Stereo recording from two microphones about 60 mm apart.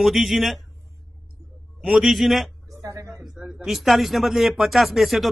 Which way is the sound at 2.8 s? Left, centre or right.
Right.